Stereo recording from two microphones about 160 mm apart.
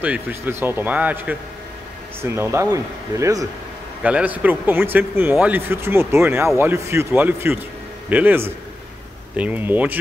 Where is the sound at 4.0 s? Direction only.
10° right (ahead or behind).